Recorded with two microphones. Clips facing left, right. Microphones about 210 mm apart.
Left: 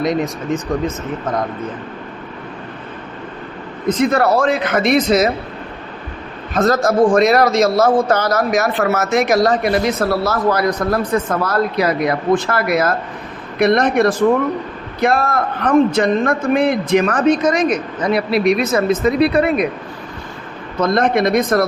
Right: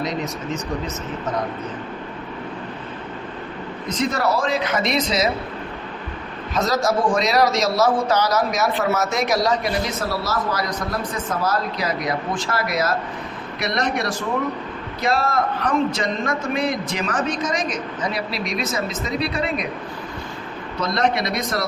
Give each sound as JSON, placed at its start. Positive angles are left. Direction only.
{"t": 0.0, "sound": "speech", "side_deg": 55}
{"t": 3.8, "sound": "speech", "side_deg": 55}
{"t": 6.5, "sound": "a man's voice", "side_deg": 55}
{"t": 20.8, "sound": "speech", "side_deg": 50}